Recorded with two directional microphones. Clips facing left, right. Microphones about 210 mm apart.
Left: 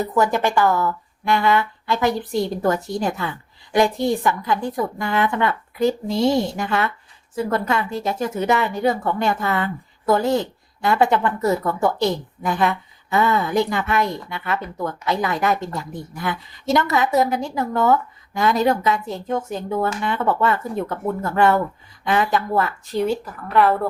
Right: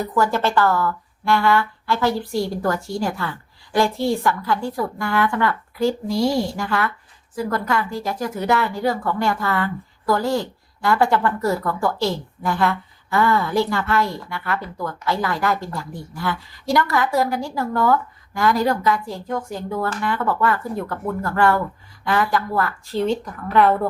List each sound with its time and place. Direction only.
0.0 s a woman's voice: 20° left (ahead or behind); by 23.9 s centre (ahead or behind)